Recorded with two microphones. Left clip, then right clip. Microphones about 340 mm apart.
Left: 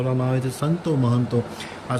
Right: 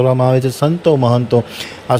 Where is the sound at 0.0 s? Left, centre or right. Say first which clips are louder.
Right 12 dB; centre.